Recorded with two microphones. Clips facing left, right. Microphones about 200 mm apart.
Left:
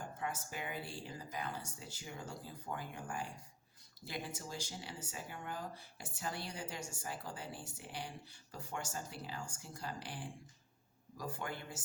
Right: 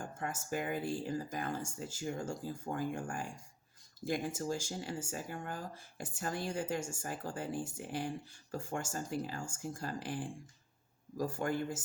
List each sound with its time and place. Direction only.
0.0 s speech: 50° right (ahead or behind)